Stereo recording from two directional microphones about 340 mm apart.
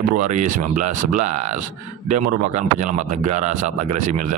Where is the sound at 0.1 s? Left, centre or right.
Right.